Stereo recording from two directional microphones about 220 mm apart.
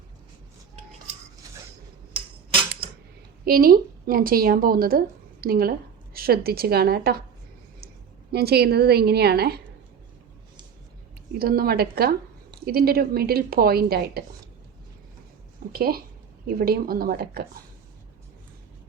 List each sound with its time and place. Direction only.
2.1 s tick-tock: 25° right (ahead or behind)
3.4 s a woman's voice: 45° right (ahead or behind)
8.3 s a woman's voice: 45° right (ahead or behind)
11.3 s a woman's voice: 45° right (ahead or behind)
15.7 s a woman's voice: 45° right (ahead or behind)